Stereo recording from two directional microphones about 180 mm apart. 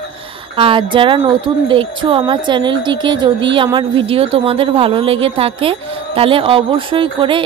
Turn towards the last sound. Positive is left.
turn(degrees=-30)  # may be behind; listen again after turning